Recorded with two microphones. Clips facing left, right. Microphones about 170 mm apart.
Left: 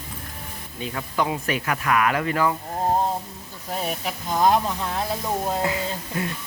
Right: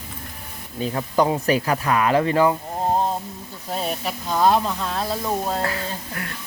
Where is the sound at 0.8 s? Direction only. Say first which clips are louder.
Right 6 dB; 40° right (ahead or behind).